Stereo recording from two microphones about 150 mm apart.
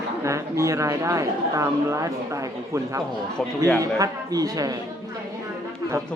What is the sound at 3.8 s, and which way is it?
Speech, 25° right (ahead or behind).